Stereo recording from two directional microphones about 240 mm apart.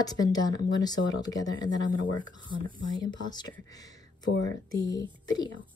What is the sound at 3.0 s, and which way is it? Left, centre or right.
Speech, centre.